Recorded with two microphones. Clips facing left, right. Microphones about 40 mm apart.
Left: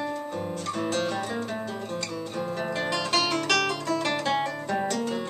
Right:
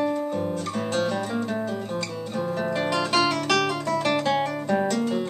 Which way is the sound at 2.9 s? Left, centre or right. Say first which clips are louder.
Right 3 dB; centre.